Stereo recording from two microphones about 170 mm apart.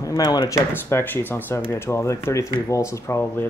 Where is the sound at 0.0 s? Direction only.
20° left (ahead or behind).